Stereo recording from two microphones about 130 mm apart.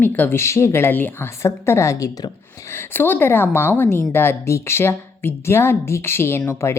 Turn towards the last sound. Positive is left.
turn(degrees=20)  # may be behind; listen again after turning